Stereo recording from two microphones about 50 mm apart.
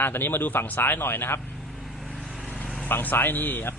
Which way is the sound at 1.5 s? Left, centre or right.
Centre.